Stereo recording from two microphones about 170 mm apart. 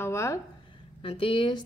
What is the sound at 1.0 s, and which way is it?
Speech, 30° left (ahead or behind).